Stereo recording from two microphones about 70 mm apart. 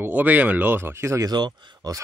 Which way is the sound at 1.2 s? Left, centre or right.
Right.